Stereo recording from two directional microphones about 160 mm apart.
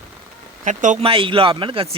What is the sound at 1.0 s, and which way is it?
Speech, 35° right (ahead or behind).